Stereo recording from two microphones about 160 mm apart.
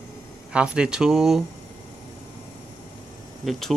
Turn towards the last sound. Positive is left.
turn(degrees=0)  # may be behind; listen again after turning